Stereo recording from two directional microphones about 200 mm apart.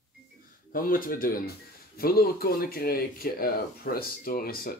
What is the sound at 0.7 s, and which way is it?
Speech, 45° left (ahead or behind).